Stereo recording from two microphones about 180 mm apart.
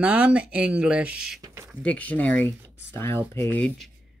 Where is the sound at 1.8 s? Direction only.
10° left (ahead or behind).